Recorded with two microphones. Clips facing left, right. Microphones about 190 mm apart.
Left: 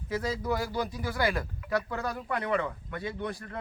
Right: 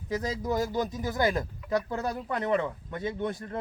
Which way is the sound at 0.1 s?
20° right (ahead or behind).